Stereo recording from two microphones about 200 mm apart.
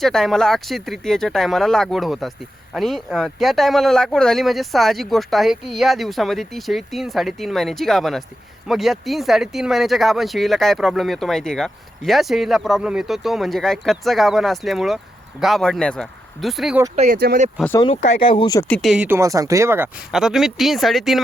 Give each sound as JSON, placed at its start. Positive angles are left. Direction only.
{"t": 0.0, "sound": "speech", "side_deg": 0}
{"t": 16.9, "sound": "speech", "side_deg": -40}
{"t": 17.2, "sound": "speech", "side_deg": -55}
{"t": 18.2, "sound": "speech", "side_deg": 25}
{"t": 18.7, "sound": "speech", "side_deg": 0}